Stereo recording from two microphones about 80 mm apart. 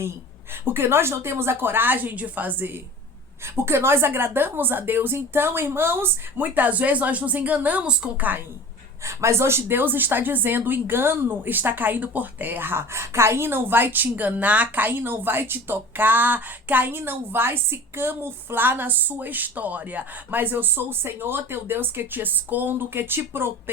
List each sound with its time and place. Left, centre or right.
0.6 s a woman's voice: right
9.0 s a woman's voice: right